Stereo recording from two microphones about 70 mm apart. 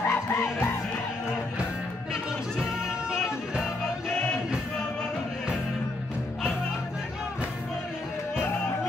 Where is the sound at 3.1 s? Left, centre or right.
Centre.